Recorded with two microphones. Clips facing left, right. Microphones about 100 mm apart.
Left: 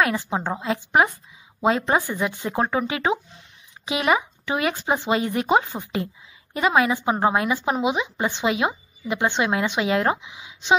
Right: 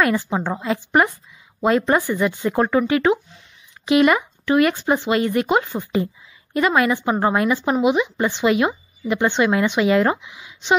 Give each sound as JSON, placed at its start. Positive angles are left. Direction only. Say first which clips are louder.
{"t": 0.0, "sound": "speech", "louder": "right 3 dB", "side_deg": 5}